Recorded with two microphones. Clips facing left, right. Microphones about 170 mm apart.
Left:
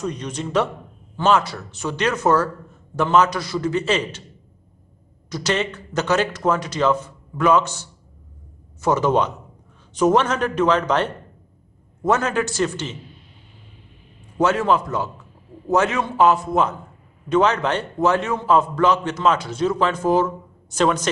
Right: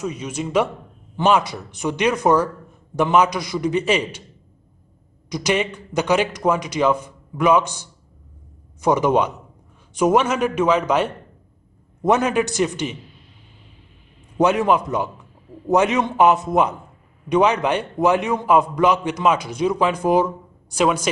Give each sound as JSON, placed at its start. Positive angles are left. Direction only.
{"t": 0.0, "sound": "a man's voice", "side_deg": -10}
{"t": 5.3, "sound": "a man's voice", "side_deg": -15}
{"t": 14.4, "sound": "a man's voice", "side_deg": -15}